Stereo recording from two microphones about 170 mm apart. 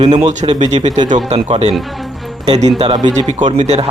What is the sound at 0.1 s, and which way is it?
A man's voice, 45° right (ahead or behind).